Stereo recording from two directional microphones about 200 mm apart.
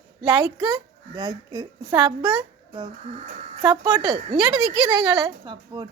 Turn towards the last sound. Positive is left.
turn(degrees=-20)  # may be behind; listen again after turning